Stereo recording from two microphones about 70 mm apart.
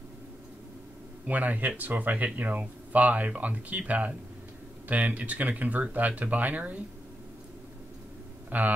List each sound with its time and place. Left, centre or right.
1.2 s speech: right
8.5 s speech: right